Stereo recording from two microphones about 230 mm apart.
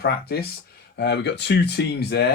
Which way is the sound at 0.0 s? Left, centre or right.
Left.